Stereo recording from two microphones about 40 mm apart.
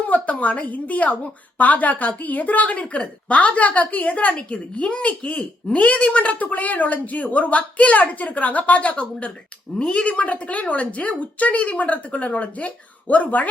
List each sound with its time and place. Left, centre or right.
0.0 s speech: left